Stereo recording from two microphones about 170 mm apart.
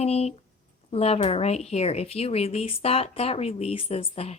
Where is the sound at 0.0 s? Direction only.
40° left (ahead or behind).